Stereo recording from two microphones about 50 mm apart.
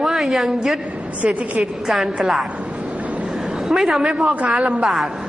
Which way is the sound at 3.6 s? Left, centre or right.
Centre.